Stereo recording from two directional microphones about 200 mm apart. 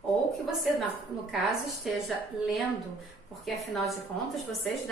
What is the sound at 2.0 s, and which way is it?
A woman's voice, centre (ahead or behind).